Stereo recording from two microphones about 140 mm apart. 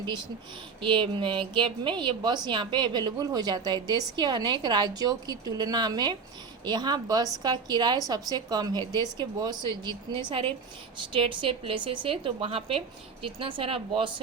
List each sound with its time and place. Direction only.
0.8 s a woman's voice: 35° right (ahead or behind)